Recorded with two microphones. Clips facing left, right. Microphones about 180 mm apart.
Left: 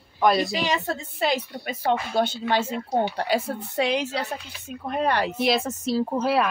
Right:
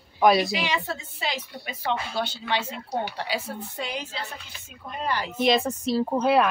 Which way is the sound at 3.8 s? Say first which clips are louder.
Left 11 dB; 85° left.